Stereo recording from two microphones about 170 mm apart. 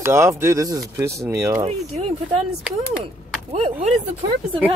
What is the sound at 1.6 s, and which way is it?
Speech, 35° right (ahead or behind).